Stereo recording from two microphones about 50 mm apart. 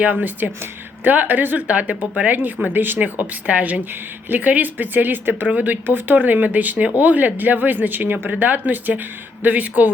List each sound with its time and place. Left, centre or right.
0.0 s speech: right
1.6 s speech: right
2.7 s speech: right